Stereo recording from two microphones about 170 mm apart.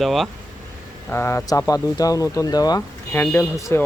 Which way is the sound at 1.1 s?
15° left (ahead or behind).